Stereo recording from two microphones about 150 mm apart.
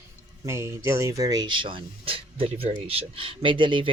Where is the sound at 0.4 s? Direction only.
20° right (ahead or behind).